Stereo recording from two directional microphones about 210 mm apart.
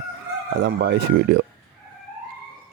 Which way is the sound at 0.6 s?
50° right (ahead or behind).